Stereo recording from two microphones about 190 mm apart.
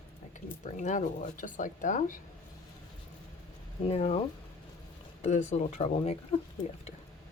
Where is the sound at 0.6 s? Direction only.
40° left (ahead or behind).